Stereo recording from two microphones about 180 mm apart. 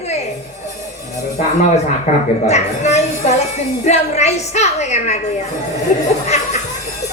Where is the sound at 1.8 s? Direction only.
40° left (ahead or behind).